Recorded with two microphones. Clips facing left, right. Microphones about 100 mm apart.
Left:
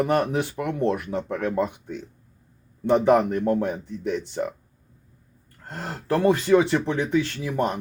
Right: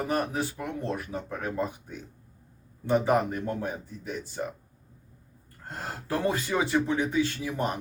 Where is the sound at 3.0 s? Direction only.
65° left (ahead or behind).